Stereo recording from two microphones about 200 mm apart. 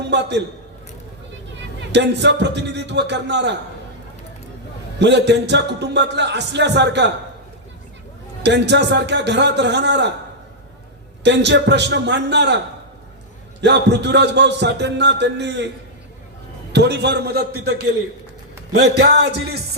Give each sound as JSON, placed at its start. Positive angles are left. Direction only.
{"t": 0.1, "sound": "speech", "side_deg": -60}
{"t": 1.9, "sound": "speech", "side_deg": -60}
{"t": 4.9, "sound": "speech", "side_deg": -60}
{"t": 8.4, "sound": "speech", "side_deg": -60}
{"t": 11.2, "sound": "speech", "side_deg": -60}
{"t": 16.7, "sound": "speech", "side_deg": -60}